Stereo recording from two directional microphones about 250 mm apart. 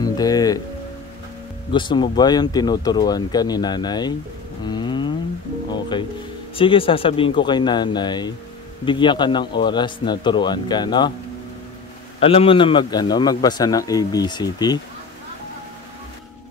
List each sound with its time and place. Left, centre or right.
0.0 s music: centre
1.7 s a man's voice: centre
4.6 s moo: centre
5.7 s music: centre
6.5 s a man's voice: left
12.2 s a man's voice: left